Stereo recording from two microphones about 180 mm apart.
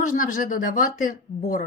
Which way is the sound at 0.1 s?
50° left (ahead or behind).